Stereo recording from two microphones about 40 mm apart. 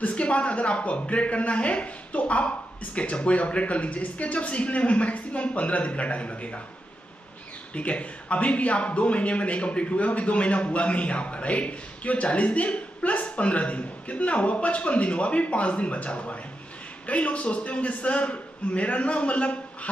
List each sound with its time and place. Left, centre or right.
0.0 s a man's voice: left
7.7 s a man's voice: left